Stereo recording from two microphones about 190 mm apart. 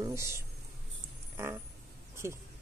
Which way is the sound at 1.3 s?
15° right (ahead or behind).